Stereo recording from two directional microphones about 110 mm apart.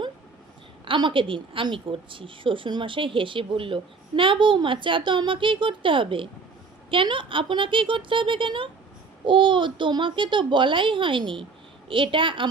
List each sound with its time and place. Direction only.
0.9 s a woman's voice: 50° right (ahead or behind)